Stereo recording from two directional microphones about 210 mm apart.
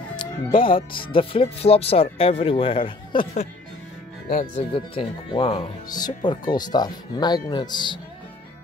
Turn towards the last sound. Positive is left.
turn(degrees=20)  # may be behind; listen again after turning